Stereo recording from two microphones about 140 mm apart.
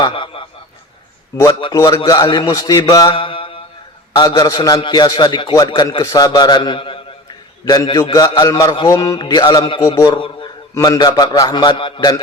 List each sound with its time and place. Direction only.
0.0 s a sound: 40° left (ahead or behind)
1.6 s a man's voice: 25° left (ahead or behind)
2.9 s mantra: 30° left (ahead or behind)
4.1 s a man's voice: 30° left (ahead or behind)
7.6 s a man's voice: 30° left (ahead or behind)
10.8 s a man's voice: 25° left (ahead or behind)